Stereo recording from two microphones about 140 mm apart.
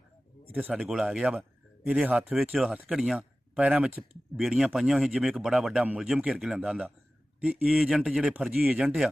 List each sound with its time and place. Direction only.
0.5 s speech: 10° right (ahead or behind)